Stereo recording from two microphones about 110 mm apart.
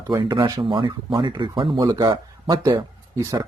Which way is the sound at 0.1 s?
40° right (ahead or behind).